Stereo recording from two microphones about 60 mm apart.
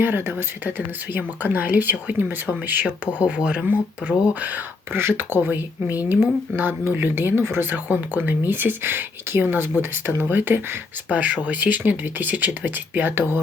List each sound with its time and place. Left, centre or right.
0.0 s speech: right
3.2 s speech: centre
4.9 s speech: right